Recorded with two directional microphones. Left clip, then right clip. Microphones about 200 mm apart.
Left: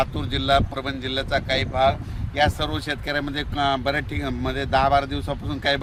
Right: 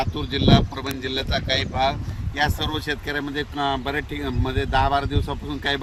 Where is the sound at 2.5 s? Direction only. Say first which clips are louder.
Even; 25° left (ahead or behind).